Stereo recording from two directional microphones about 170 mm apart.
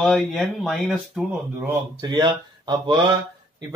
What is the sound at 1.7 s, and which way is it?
Speech, 25° right (ahead or behind).